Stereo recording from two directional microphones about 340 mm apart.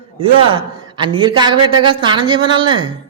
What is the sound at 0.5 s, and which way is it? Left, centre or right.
A woman's voice, centre.